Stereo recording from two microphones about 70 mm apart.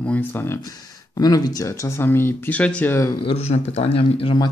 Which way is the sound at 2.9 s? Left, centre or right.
Left.